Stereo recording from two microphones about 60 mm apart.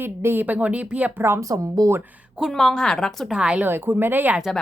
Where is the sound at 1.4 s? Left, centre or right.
Right.